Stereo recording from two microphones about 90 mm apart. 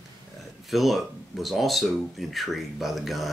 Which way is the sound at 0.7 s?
Centre (ahead or behind).